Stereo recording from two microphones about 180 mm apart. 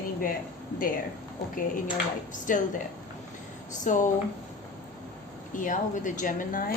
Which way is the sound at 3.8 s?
45° left (ahead or behind).